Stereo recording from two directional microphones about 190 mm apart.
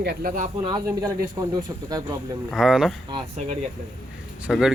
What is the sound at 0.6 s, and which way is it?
Speech, 20° right (ahead or behind).